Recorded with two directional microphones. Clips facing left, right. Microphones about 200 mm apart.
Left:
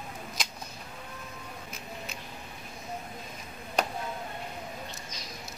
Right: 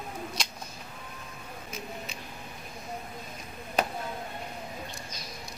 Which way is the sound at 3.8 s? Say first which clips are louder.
Right 1 dB; centre (ahead or behind).